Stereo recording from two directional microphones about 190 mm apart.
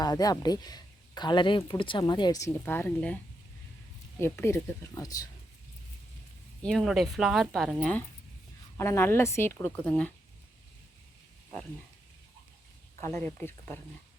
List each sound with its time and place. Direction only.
0.0 s speech: 20° left (ahead or behind)
4.2 s a woman's voice: 15° left (ahead or behind)
6.6 s a woman's voice: 5° left (ahead or behind)
13.0 s a woman's voice: 10° left (ahead or behind)